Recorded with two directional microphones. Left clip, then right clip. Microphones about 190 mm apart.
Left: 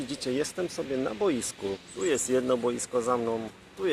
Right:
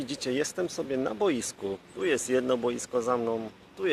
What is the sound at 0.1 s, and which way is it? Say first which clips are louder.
Speech: right 1 dB; 20° right (ahead or behind).